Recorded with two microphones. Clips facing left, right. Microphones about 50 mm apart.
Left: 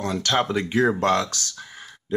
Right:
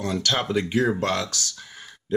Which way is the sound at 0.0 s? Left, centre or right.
Left.